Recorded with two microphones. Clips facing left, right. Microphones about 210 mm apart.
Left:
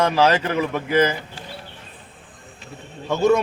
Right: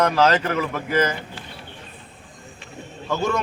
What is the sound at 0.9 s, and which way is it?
Speech, 30° left (ahead or behind).